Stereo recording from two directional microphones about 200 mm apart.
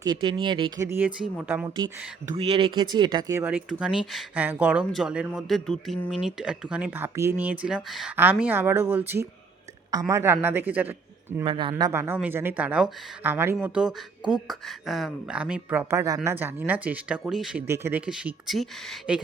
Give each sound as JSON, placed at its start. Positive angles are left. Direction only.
{"t": 0.0, "sound": "speech", "side_deg": -20}
{"t": 0.9, "sound": "speech", "side_deg": -10}
{"t": 1.7, "sound": "speech", "side_deg": -20}
{"t": 11.4, "sound": "speech", "side_deg": -25}